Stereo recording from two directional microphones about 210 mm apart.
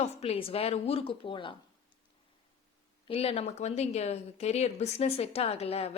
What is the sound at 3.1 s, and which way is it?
A woman's voice, 30° left (ahead or behind).